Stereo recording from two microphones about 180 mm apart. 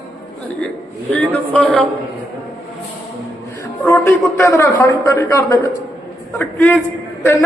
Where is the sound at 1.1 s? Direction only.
5° left (ahead or behind).